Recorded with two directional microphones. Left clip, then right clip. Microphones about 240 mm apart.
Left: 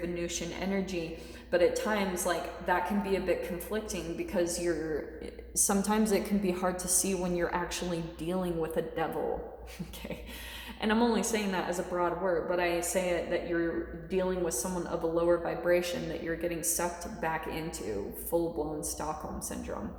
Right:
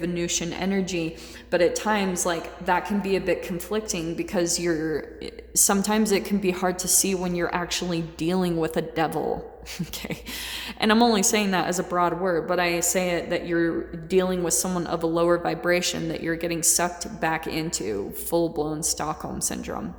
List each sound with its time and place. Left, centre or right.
0.0 s a woman's voice: right
5.5 s a woman's voice: right
10.8 s a woman's voice: right